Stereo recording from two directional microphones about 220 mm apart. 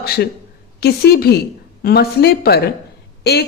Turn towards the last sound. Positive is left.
turn(degrees=50)  # may be behind; listen again after turning